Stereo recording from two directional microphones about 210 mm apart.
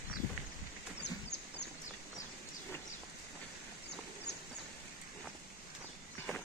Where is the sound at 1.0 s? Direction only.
55° left (ahead or behind).